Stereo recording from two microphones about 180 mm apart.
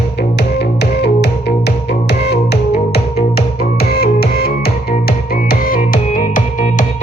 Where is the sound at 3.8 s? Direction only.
60° left (ahead or behind).